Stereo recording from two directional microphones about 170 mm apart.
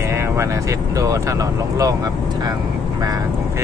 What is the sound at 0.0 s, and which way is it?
Speech, 15° right (ahead or behind).